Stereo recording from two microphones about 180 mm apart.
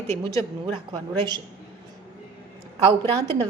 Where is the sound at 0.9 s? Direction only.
25° right (ahead or behind).